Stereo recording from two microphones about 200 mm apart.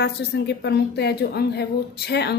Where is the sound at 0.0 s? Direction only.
55° left (ahead or behind).